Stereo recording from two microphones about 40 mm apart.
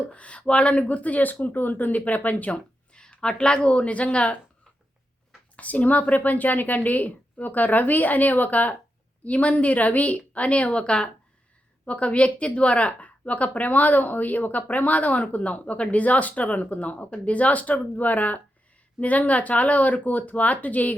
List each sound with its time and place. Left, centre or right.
0.1 s a woman's voice: left
2.5 s a woman's voice: left
5.5 s a woman's voice: left